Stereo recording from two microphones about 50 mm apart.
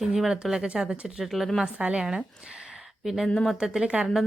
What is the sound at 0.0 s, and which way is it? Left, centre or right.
Speech, centre.